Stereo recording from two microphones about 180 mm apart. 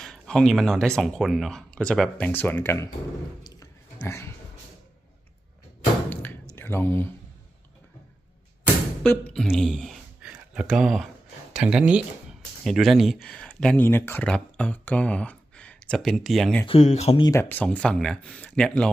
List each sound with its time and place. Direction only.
0.0 s speech: 5° left (ahead or behind)
3.4 s a sound: 20° left (ahead or behind)
6.1 s a sound: 10° left (ahead or behind)
6.6 s speech: 10° left (ahead or behind)
9.0 s speech: 5° left (ahead or behind)
16.6 s speech: 35° left (ahead or behind)
17.2 s speech: 15° left (ahead or behind)